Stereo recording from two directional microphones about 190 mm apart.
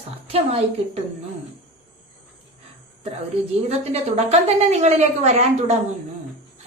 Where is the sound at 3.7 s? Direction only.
35° right (ahead or behind).